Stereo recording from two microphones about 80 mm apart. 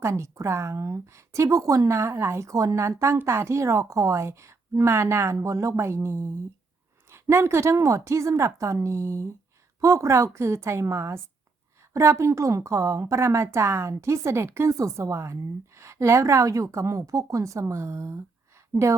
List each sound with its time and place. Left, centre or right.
0.0 s a woman's voice: right